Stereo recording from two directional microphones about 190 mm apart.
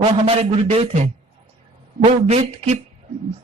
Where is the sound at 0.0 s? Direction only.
30° right (ahead or behind).